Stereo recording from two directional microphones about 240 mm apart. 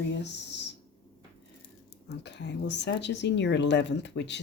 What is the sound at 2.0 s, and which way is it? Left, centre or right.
A woman's voice, left.